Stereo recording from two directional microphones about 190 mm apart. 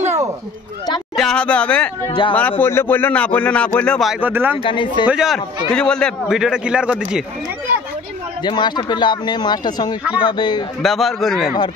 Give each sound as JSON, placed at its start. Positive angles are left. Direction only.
{"t": 1.1, "sound": "a man's voice", "side_deg": 5}
{"t": 2.0, "sound": "speech", "side_deg": 25}
{"t": 2.6, "sound": "speech", "side_deg": 10}
{"t": 4.6, "sound": "speech", "side_deg": 25}
{"t": 5.0, "sound": "a man's voice", "side_deg": -5}
{"t": 8.4, "sound": "speech", "side_deg": 25}
{"t": 10.8, "sound": "a man's voice", "side_deg": 0}